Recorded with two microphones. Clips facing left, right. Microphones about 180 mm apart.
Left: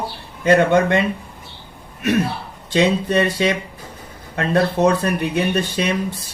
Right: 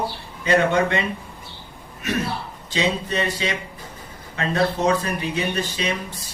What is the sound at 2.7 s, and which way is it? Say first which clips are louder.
Speech: left 7 dB; 55° left (ahead or behind).